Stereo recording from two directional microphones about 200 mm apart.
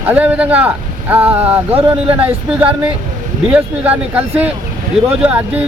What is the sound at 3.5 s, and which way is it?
Speech, 5° right (ahead or behind).